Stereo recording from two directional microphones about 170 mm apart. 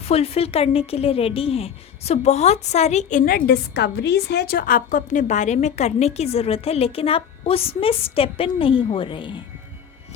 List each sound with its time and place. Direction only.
0.0 s a woman's voice: 35° left (ahead or behind)